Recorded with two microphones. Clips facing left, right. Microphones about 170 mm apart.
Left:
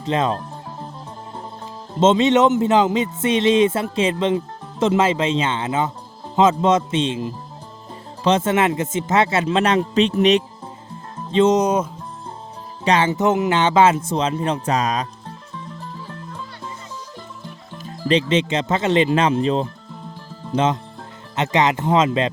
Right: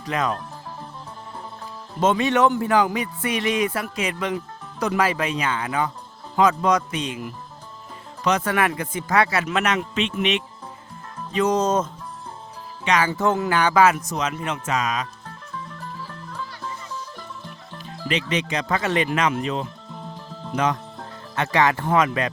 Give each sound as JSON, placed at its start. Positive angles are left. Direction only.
{"t": 0.0, "sound": "speech", "side_deg": 25}
{"t": 2.0, "sound": "speech", "side_deg": 20}
{"t": 11.3, "sound": "speech", "side_deg": 25}
{"t": 12.8, "sound": "speech", "side_deg": 30}
{"t": 16.0, "sound": "music", "side_deg": 20}
{"t": 18.1, "sound": "speech", "side_deg": 30}
{"t": 21.3, "sound": "speech", "side_deg": 20}